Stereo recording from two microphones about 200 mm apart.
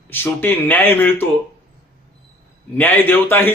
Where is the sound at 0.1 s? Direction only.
10° left (ahead or behind).